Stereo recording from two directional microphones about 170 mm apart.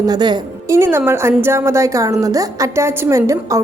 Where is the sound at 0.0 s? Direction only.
25° right (ahead or behind).